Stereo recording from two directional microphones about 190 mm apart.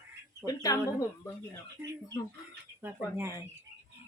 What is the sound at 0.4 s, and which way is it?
Speech, 20° left (ahead or behind).